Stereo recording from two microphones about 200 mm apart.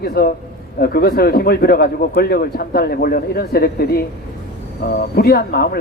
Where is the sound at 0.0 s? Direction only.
50° left (ahead or behind).